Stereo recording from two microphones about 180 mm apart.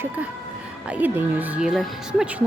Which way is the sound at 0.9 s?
10° right (ahead or behind).